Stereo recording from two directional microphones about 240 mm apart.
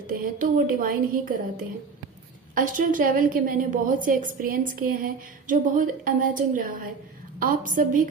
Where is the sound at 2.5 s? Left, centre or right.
Right.